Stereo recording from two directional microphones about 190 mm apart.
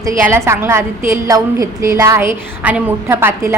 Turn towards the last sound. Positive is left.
turn(degrees=-10)  # may be behind; listen again after turning